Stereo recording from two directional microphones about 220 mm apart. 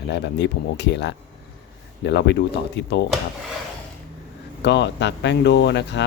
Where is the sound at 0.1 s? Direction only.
50° left (ahead or behind).